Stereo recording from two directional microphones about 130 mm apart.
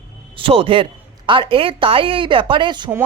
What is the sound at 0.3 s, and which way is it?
A man's voice, 45° right (ahead or behind).